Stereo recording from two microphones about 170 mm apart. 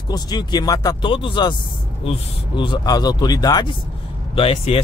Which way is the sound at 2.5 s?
25° left (ahead or behind).